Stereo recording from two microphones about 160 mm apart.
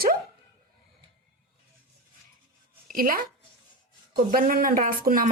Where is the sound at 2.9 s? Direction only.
65° right (ahead or behind).